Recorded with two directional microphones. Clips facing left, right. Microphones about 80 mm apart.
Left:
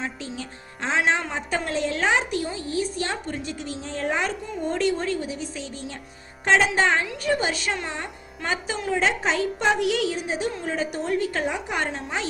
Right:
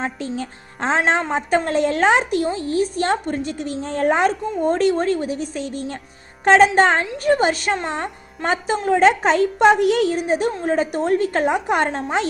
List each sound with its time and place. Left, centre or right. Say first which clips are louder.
0.0 s a woman's voice: right 7 dB; right
7.8 s speech: right 6 dB; right
8.0 s a woman's voice: right 7 dB; right